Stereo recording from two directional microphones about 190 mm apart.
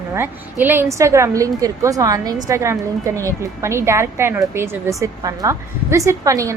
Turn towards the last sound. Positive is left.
turn(degrees=-15)  # may be behind; listen again after turning